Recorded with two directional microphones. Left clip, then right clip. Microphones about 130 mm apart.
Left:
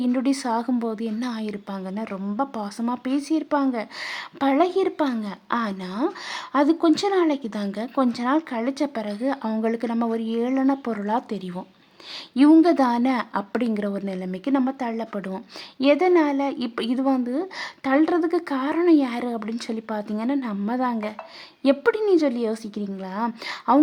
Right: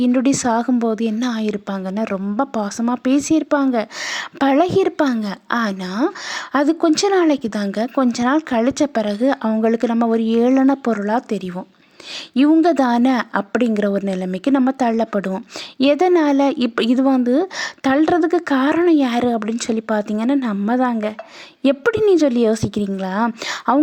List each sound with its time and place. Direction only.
0.0 s a woman's voice: 35° right (ahead or behind)
11.0 s a woman's voice: 25° right (ahead or behind)